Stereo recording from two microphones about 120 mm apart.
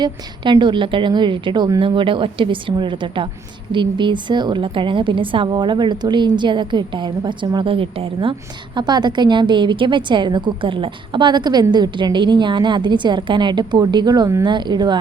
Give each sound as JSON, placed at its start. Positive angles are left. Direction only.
{"t": 0.0, "sound": "a woman's voice", "side_deg": -40}